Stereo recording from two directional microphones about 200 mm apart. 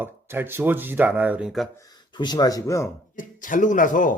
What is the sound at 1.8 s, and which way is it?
Speech, 20° left (ahead or behind).